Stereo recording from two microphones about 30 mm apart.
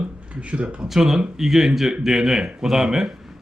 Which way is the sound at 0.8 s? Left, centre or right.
Centre.